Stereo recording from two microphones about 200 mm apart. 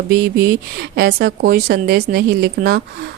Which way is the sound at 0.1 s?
55° right (ahead or behind).